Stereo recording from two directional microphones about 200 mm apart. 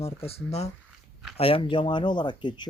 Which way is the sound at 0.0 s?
30° left (ahead or behind).